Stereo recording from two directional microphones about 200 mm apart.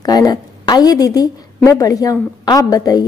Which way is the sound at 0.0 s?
20° left (ahead or behind).